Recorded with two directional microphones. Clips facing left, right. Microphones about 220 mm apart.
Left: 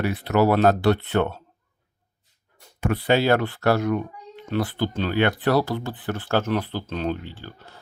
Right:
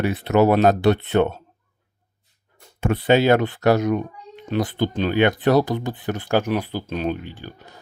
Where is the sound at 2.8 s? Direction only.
25° right (ahead or behind).